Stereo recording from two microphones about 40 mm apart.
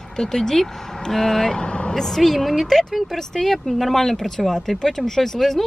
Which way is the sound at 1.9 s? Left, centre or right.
Centre.